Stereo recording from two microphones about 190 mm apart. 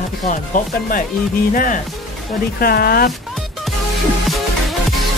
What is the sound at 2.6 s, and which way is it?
Speech, 50° left (ahead or behind).